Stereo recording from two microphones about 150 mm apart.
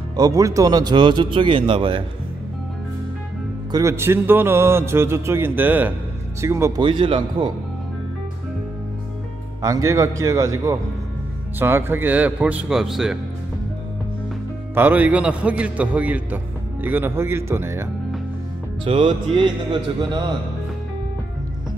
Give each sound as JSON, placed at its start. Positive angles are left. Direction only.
{"t": 0.1, "sound": "speech", "side_deg": -25}
{"t": 3.7, "sound": "speech", "side_deg": -20}
{"t": 6.8, "sound": "speech", "side_deg": -35}
{"t": 9.6, "sound": "speech", "side_deg": -20}
{"t": 14.8, "sound": "speech", "side_deg": -10}
{"t": 18.9, "sound": "speech", "side_deg": -35}